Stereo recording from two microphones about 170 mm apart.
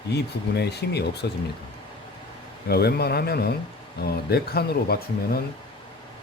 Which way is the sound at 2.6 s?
70° left (ahead or behind).